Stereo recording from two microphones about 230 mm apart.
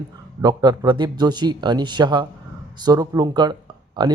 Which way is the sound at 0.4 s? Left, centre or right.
Centre.